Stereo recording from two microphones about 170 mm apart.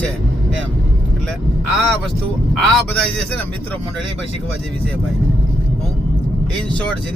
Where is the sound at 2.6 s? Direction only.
5° left (ahead or behind).